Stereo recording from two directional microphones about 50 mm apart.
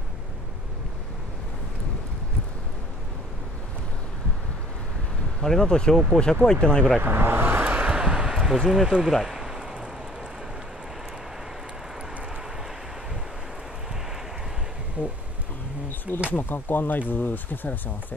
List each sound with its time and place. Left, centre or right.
5.4 s speech: centre
7.0 s vehicle: right
7.6 s vehicle: right
7.9 s a sound: centre
8.6 s speech: centre
9.0 s a sound: centre
16.3 s speech: left